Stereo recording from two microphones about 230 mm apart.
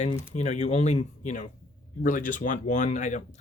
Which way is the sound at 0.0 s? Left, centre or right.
Left.